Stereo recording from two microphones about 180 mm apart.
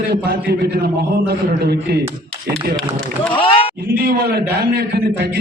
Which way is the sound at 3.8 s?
55° right (ahead or behind).